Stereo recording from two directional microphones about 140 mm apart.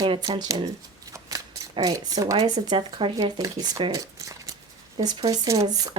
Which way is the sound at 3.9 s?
25° right (ahead or behind).